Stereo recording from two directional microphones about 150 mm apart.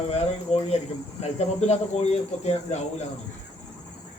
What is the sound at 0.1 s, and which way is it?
Speech, 45° left (ahead or behind).